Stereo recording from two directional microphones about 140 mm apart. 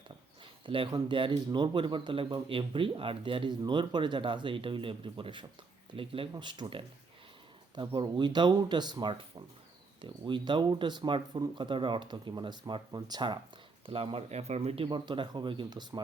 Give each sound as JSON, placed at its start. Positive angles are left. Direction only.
{"t": 0.6, "sound": "speech", "side_deg": -40}
{"t": 14.8, "sound": "speech", "side_deg": -35}